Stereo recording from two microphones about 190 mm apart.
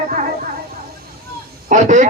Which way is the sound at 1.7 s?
40° right (ahead or behind).